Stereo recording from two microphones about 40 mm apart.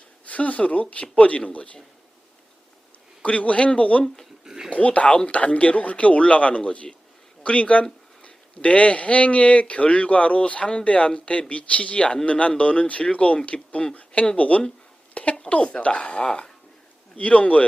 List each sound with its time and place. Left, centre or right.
0.3 s a man's voice: left
3.2 s a man's voice: left
4.4 s dog: centre
4.7 s a man's voice: left
15.1 s a sound: left
15.4 s a man's voice: left